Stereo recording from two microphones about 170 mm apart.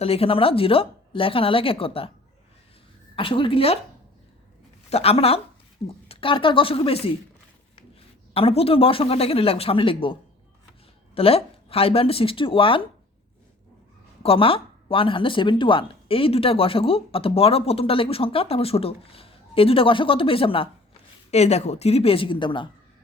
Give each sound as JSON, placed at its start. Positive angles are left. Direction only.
{"t": 0.0, "sound": "speech", "side_deg": 35}
{"t": 3.2, "sound": "speech", "side_deg": 30}
{"t": 4.9, "sound": "speech", "side_deg": 35}
{"t": 8.3, "sound": "speech", "side_deg": 35}
{"t": 14.2, "sound": "speech", "side_deg": 35}